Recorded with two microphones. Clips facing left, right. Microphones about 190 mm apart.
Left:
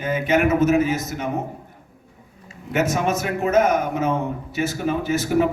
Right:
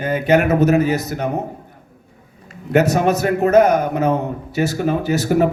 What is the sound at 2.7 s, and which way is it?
A man's voice, 35° right (ahead or behind).